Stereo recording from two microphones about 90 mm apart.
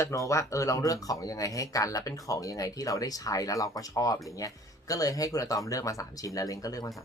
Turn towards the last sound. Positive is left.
turn(degrees=40)  # may be behind; listen again after turning